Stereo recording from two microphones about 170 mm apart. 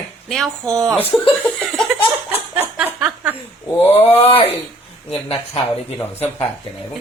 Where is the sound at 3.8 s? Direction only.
10° left (ahead or behind).